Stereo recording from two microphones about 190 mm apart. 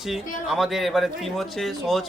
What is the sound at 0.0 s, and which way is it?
A man's voice, centre (ahead or behind).